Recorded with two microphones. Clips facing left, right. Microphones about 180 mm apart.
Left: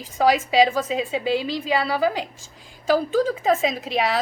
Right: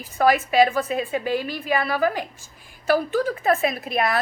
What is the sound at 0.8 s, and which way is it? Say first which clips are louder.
Speech: even; 90° left.